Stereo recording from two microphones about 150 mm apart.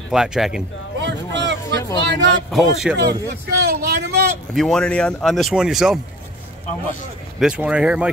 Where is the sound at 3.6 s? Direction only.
90° right.